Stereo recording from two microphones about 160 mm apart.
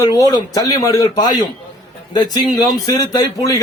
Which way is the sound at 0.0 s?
20° left (ahead or behind).